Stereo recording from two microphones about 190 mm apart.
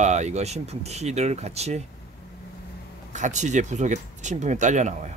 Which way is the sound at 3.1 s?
40° right (ahead or behind).